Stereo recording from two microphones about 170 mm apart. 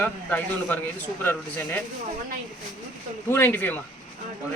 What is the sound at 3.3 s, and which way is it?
Speech, 15° left (ahead or behind).